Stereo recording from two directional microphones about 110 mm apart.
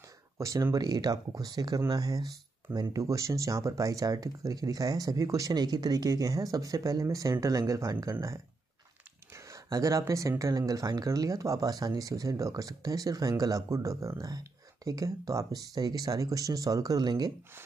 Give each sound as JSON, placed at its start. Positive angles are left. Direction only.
{"t": 0.4, "sound": "speech", "side_deg": -30}
{"t": 9.5, "sound": "speech", "side_deg": -30}